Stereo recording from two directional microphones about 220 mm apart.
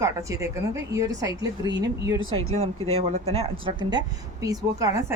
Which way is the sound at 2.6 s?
30° right (ahead or behind).